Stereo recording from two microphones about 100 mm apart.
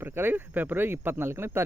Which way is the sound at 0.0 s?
20° right (ahead or behind).